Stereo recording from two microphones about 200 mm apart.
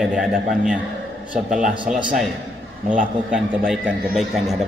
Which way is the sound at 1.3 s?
40° right (ahead or behind).